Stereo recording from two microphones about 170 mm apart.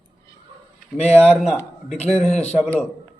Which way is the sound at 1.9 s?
40° left (ahead or behind).